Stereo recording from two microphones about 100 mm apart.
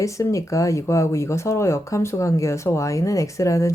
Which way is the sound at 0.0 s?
30° left (ahead or behind).